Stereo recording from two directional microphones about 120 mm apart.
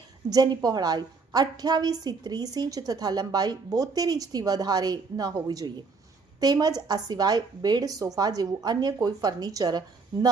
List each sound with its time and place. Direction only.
0.3 s a woman's voice: 35° right (ahead or behind)